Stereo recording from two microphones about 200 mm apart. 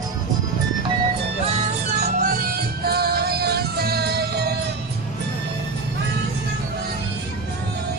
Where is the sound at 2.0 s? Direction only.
45° right (ahead or behind).